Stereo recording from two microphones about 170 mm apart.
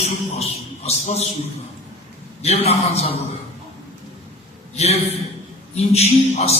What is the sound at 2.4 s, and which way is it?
Speech, 40° left (ahead or behind).